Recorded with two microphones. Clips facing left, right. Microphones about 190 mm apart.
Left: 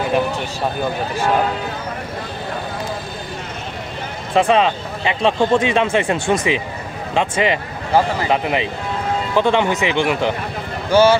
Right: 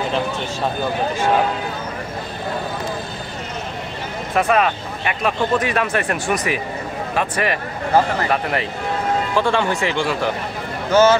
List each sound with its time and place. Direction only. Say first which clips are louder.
4.4 s a man's voice: left 3 dB; 25° left (ahead or behind)